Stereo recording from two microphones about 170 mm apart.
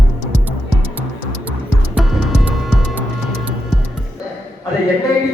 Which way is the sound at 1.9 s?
5° right (ahead or behind).